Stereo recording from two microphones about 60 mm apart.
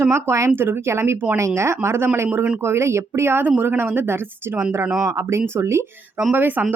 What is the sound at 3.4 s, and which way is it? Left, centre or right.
A woman's voice, right.